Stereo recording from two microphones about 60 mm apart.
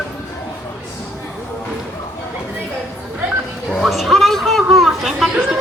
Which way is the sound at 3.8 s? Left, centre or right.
Centre.